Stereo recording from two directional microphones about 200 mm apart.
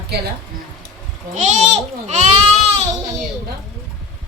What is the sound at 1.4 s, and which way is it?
Speech, 35° right (ahead or behind).